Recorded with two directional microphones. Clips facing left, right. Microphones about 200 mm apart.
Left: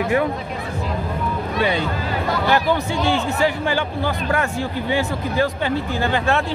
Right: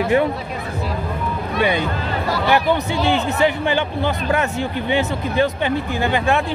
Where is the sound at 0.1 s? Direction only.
25° right (ahead or behind).